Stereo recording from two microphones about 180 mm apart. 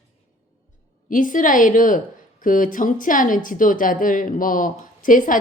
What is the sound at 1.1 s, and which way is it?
Speech, 50° left (ahead or behind).